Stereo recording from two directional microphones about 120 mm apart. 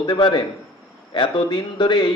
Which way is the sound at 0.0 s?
40° left (ahead or behind).